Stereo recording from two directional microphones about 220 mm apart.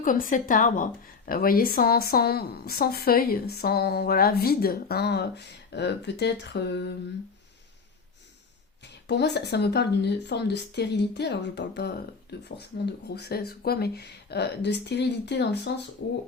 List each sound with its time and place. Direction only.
0.0 s a woman's voice: 35° left (ahead or behind)
8.8 s a woman's voice: 50° left (ahead or behind)